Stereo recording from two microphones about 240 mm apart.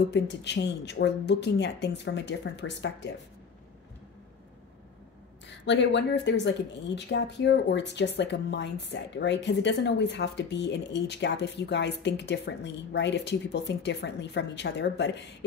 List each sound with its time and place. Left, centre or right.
0.1 s speech: left
5.5 s speech: left